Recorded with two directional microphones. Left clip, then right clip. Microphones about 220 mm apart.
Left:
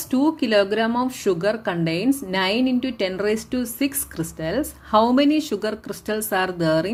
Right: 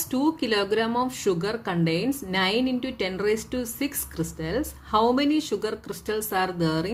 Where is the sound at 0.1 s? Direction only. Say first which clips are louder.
Left 5 dB; 25° left (ahead or behind).